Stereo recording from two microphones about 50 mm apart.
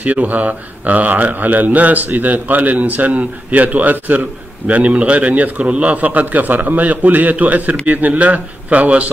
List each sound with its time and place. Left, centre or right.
0.0 s speech: right